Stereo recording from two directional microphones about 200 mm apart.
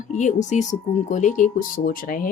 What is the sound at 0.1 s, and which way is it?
Speech, 35° left (ahead or behind).